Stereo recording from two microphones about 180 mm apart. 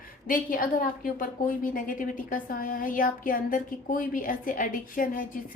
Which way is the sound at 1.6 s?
50° left (ahead or behind).